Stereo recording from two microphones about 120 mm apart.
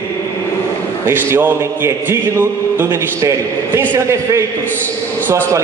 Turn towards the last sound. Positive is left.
turn(degrees=-25)  # may be behind; listen again after turning